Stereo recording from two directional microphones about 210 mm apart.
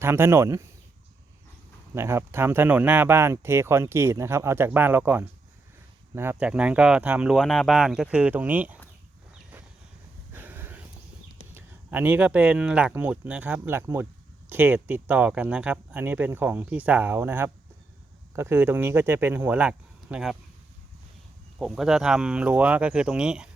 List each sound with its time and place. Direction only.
0.0 s speech: 10° right (ahead or behind)
2.0 s speech: 10° right (ahead or behind)
10.3 s dog: 10° right (ahead or behind)
11.5 s speech: 10° right (ahead or behind)
21.6 s speech: centre (ahead or behind)